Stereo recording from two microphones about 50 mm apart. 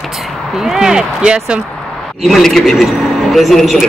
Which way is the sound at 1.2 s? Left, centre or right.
Right.